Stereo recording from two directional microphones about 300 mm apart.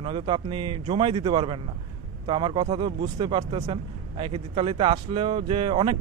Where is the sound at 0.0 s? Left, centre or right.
Centre.